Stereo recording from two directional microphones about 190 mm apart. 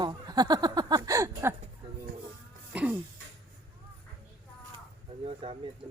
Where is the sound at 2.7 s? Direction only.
5° right (ahead or behind).